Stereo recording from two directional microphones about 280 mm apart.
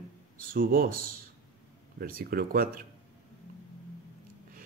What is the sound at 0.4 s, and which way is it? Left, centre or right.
Speech, right.